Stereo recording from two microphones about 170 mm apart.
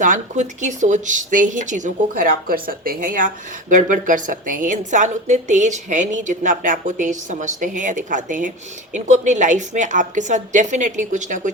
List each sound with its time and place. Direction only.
0.0 s speech: 50° right (ahead or behind)